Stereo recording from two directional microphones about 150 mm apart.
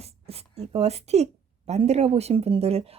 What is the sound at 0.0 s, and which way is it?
A woman's voice, 45° right (ahead or behind).